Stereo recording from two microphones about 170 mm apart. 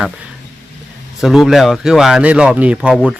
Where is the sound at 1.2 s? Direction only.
Centre (ahead or behind).